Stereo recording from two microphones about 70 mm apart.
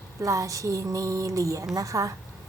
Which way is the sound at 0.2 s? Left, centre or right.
Right.